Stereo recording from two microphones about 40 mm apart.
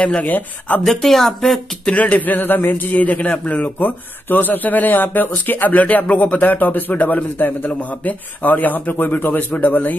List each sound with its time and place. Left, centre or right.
0.0 s speech: left
0.3 s speech: left
0.8 s speech: centre
2.0 s speech: left
2.9 s speech: left